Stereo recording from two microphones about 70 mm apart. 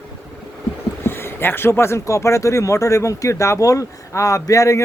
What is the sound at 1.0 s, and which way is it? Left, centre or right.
Speech, left.